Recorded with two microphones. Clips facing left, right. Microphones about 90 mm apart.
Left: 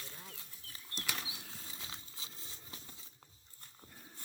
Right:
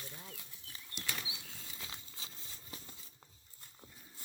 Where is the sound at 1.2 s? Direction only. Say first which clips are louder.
Left 1 dB; 35° left (ahead or behind).